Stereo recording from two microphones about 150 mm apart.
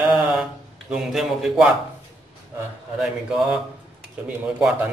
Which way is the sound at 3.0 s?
5° right (ahead or behind).